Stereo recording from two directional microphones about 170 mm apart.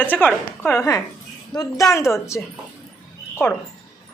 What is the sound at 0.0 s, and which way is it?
Speech, 10° left (ahead or behind).